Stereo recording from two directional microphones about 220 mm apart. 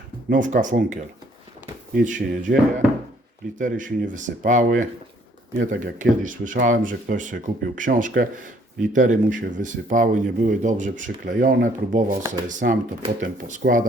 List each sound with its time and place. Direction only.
0.3 s speech: 35° right (ahead or behind)